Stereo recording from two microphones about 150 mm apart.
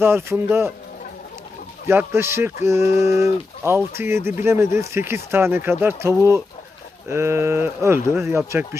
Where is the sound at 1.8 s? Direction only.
15° right (ahead or behind).